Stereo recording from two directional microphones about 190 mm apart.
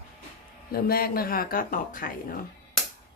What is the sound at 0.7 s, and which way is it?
Speech, 50° left (ahead or behind).